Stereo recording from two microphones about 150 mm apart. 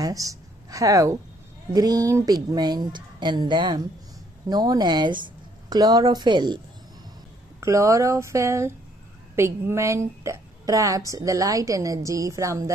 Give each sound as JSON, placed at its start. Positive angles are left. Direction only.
{"t": 0.0, "sound": "a sound", "side_deg": -25}
{"t": 1.7, "sound": "a woman's voice", "side_deg": -25}
{"t": 7.6, "sound": "a woman's voice", "side_deg": -20}